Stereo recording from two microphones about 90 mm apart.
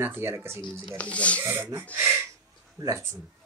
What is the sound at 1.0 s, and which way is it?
Speech, 15° left (ahead or behind).